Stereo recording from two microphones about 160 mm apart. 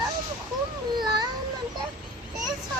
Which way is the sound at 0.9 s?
25° right (ahead or behind).